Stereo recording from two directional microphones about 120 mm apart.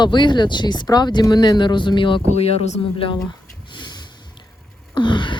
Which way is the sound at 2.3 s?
60° left (ahead or behind).